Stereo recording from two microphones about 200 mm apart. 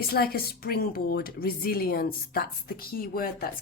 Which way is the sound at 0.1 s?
50° left (ahead or behind).